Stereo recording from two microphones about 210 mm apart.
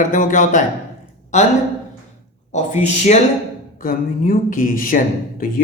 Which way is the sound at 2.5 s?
35° left (ahead or behind).